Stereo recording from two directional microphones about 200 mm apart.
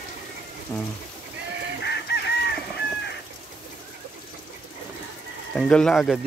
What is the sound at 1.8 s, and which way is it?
Chicken, 55° left (ahead or behind).